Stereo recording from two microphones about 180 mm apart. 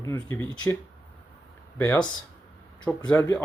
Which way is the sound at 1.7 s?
5° left (ahead or behind).